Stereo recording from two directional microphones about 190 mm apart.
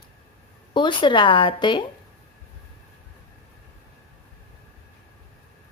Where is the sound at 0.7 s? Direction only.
25° left (ahead or behind).